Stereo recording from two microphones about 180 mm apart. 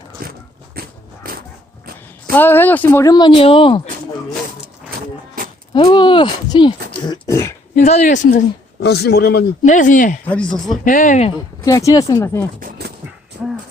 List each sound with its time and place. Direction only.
0.2 s dog: 55° right (ahead or behind)
0.8 s biting: 55° right (ahead or behind)
2.3 s speech: 10° left (ahead or behind); by 3.8 s 30° left (ahead or behind)
4.9 s a sound: 55° right (ahead or behind)
5.7 s speech: 25° left (ahead or behind)
7.1 s cough: 15° left (ahead or behind)
7.8 s speech: 35° left (ahead or behind)
8.8 s a man's voice: 65° left (ahead or behind)
9.6 s speech: 45° left (ahead or behind)
10.2 s speech: 5° left (ahead or behind)
10.8 s speech: 45° left (ahead or behind)
11.6 s speech: 20° left (ahead or behind)
12.5 s dog: 50° right (ahead or behind)